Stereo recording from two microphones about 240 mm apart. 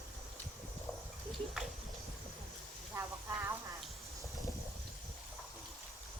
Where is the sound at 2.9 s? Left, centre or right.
Centre.